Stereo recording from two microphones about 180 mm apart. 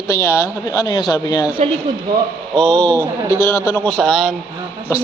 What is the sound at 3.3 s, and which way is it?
Speech, 15° left (ahead or behind).